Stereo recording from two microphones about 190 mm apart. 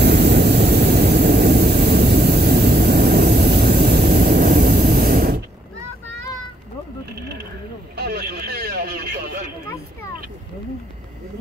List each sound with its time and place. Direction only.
0.0 s vehicle: 60° right (ahead or behind)
7.9 s vehicle: 55° right (ahead or behind)